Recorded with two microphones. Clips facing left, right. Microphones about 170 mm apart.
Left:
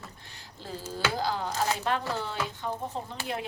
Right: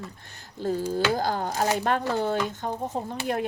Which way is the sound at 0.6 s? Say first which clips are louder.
Right 8 dB; 50° right (ahead or behind).